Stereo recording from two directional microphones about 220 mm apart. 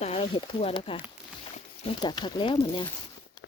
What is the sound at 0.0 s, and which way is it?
Speech, 25° left (ahead or behind).